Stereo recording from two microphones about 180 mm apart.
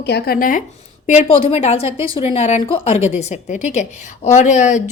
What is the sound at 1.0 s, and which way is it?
Speech, 35° left (ahead or behind).